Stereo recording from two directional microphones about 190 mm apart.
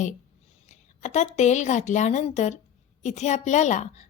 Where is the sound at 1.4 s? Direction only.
40° left (ahead or behind).